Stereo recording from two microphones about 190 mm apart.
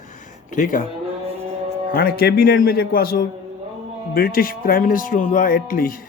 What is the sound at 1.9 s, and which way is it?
A man's voice, 50° left (ahead or behind).